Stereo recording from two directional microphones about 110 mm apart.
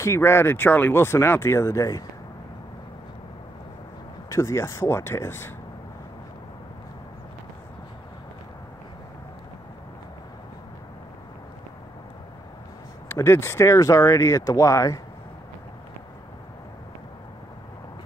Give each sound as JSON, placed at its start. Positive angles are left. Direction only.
{"t": 0.0, "sound": "speech", "side_deg": 25}
{"t": 4.3, "sound": "speech", "side_deg": 25}
{"t": 13.1, "sound": "speech", "side_deg": 25}